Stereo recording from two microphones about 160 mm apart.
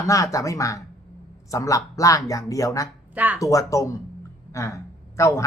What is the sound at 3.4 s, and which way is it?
A woman's voice, 20° left (ahead or behind).